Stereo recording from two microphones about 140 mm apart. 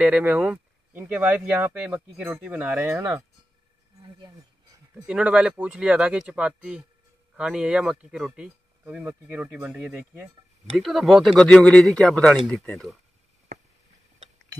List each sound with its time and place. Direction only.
0.0 s speech: 10° right (ahead or behind)
5.0 s speech: 10° right (ahead or behind)
13.5 s a sound: 90° right